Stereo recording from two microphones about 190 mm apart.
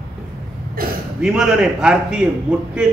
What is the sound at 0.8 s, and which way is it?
Speech, 50° right (ahead or behind).